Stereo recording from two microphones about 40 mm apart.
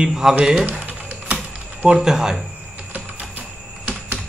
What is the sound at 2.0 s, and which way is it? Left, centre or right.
Speech, centre.